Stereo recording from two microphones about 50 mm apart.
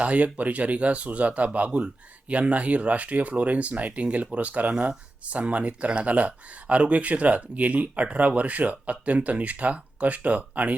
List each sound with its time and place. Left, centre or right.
0.0 s speech: right